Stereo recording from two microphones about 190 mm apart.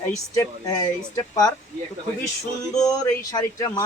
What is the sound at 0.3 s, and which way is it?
Speech, 20° left (ahead or behind).